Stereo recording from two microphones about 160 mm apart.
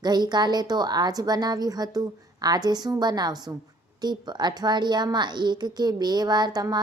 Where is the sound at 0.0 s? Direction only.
25° right (ahead or behind).